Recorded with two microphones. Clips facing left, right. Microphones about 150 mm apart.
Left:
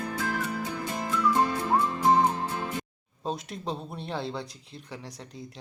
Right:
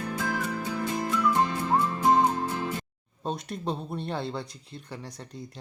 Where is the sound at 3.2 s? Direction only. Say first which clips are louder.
Right 1 dB; centre (ahead or behind).